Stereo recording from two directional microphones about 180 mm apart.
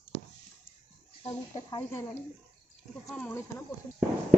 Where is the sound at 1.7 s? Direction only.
15° left (ahead or behind).